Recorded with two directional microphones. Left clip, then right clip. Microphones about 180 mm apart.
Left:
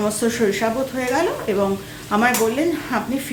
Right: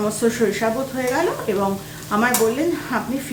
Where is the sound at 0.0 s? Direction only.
10° left (ahead or behind).